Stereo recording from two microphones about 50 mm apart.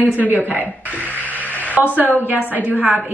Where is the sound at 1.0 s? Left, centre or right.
Left.